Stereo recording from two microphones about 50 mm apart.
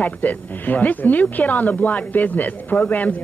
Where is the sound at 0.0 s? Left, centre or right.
Left.